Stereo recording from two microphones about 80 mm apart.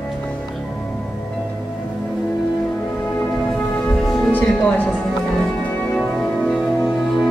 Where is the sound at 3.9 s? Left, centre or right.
Centre.